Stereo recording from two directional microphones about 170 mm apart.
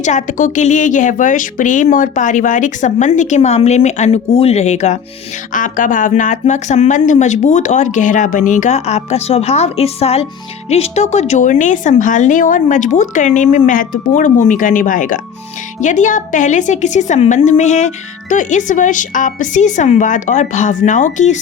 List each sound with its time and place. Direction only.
0.0 s a woman's voice: 45° left (ahead or behind)